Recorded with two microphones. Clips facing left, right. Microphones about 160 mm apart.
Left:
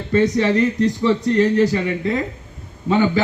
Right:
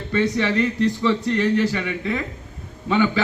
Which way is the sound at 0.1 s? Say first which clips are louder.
Left 5 dB; 35° left (ahead or behind).